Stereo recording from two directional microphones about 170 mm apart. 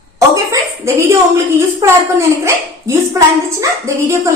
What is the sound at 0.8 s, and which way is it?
Speech, 15° right (ahead or behind).